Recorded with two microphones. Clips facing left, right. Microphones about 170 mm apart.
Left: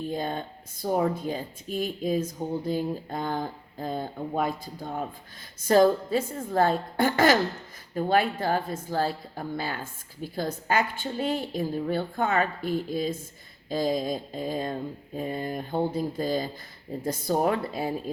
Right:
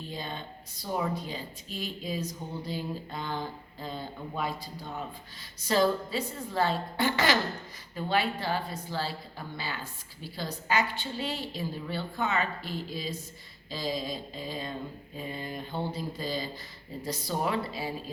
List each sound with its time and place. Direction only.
0.0 s a woman's voice: 50° left (ahead or behind)